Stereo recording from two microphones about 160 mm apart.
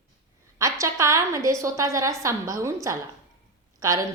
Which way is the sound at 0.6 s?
20° right (ahead or behind).